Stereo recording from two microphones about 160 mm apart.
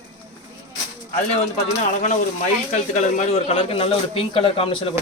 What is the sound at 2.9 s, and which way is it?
A man's voice, 40° left (ahead or behind).